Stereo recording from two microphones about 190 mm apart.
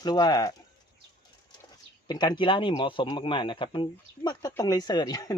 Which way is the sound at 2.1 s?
25° left (ahead or behind).